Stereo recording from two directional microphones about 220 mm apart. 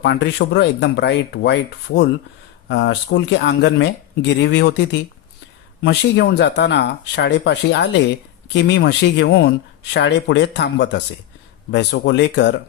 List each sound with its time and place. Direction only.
0.0 s speech: 50° left (ahead or behind)
2.6 s speech: 50° left (ahead or behind)